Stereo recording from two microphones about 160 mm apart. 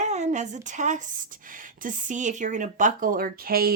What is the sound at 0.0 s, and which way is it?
A woman's voice, 45° right (ahead or behind).